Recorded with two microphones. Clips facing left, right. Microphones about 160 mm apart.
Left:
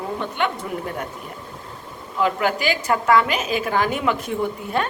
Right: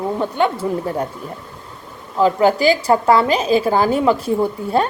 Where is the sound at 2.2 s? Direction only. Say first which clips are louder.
Right 7 dB; 35° right (ahead or behind).